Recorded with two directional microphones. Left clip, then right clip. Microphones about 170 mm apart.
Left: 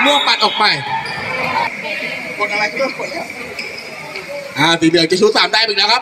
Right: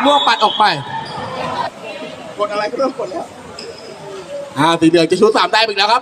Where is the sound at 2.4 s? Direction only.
30° right (ahead or behind).